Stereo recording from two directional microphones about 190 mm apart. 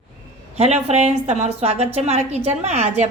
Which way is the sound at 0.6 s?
35° right (ahead or behind).